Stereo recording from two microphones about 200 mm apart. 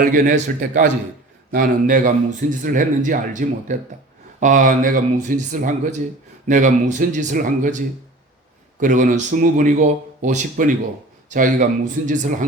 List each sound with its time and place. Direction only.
0.0 s speech: 45° right (ahead or behind)
8.8 s speech: 40° right (ahead or behind)